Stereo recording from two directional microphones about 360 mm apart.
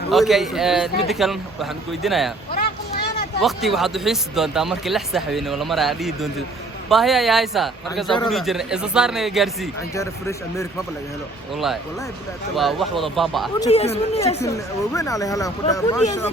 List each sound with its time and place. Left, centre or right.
0.1 s speech: centre
2.5 s vehicle: left
3.4 s speech: centre
13.6 s speech: centre